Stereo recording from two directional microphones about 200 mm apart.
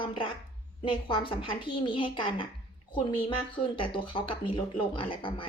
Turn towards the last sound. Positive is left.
turn(degrees=25)  # may be behind; listen again after turning